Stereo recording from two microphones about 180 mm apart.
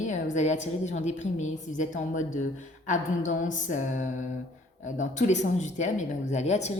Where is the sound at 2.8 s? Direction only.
45° left (ahead or behind).